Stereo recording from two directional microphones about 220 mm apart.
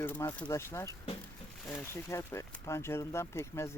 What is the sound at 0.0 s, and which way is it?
Speech, 10° left (ahead or behind).